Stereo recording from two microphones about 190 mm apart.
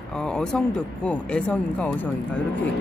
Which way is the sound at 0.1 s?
5° left (ahead or behind).